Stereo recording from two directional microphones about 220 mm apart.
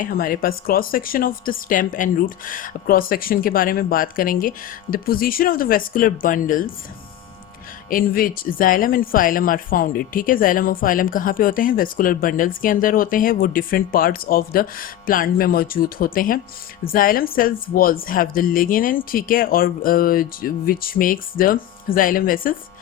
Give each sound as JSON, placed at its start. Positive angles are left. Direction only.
{"t": 0.0, "sound": "speech", "side_deg": 40}
{"t": 7.9, "sound": "speech", "side_deg": 40}